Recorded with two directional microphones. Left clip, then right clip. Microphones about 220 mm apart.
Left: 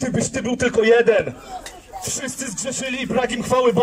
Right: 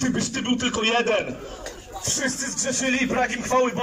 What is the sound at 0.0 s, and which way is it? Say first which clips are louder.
A man's voice: left 3 dB; 30° left (ahead or behind).